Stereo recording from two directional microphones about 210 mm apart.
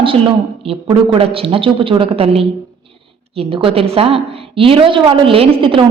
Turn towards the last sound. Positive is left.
turn(degrees=-25)  # may be behind; listen again after turning